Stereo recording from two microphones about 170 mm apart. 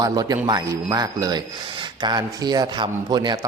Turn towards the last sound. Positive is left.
turn(degrees=-25)  # may be behind; listen again after turning